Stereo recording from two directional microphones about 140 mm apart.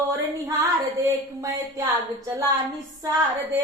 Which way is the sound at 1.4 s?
25° right (ahead or behind).